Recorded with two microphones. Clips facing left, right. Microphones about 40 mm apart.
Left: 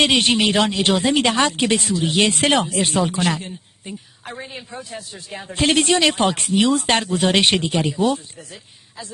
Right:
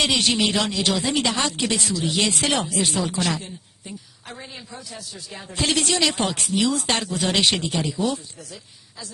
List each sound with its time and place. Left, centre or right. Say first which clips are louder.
0.0 s speech: left 4 dB; left